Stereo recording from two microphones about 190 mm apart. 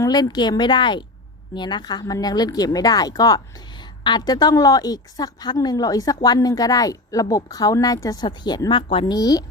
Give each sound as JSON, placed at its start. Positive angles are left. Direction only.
{"t": 0.0, "sound": "a woman's voice", "side_deg": 20}